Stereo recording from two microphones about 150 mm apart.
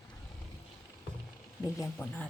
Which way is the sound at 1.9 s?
10° left (ahead or behind).